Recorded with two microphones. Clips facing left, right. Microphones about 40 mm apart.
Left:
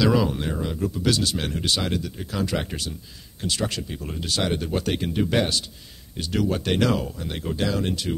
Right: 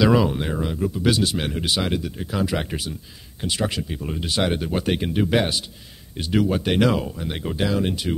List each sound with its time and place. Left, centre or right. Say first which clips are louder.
0.0 s speech: right 3 dB; centre